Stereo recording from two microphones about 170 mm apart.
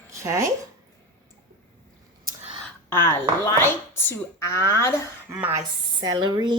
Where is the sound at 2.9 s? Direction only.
15° left (ahead or behind).